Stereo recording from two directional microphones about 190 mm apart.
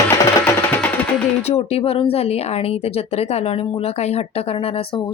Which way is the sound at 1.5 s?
30° left (ahead or behind).